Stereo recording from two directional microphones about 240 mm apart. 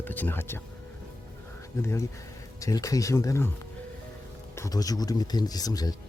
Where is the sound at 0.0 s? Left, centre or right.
Centre.